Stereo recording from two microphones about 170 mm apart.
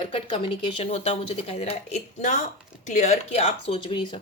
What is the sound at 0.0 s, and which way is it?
Speech, 30° left (ahead or behind).